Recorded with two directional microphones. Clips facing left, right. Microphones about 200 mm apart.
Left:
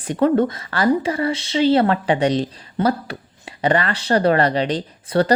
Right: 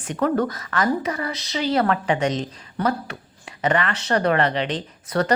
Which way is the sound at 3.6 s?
35° left (ahead or behind).